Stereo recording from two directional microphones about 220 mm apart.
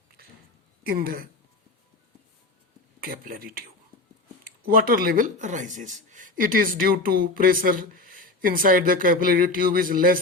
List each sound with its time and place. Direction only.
0.9 s speech: 40° right (ahead or behind)
3.0 s speech: 40° right (ahead or behind)